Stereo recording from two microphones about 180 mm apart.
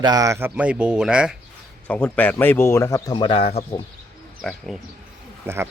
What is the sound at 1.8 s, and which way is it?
Speech, 10° left (ahead or behind).